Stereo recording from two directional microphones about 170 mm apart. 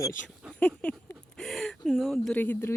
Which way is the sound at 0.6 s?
10° left (ahead or behind).